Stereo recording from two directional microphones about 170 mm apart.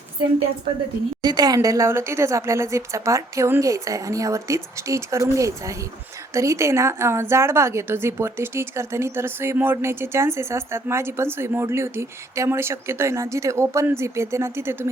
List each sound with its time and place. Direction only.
1.2 s a woman's voice: 25° right (ahead or behind)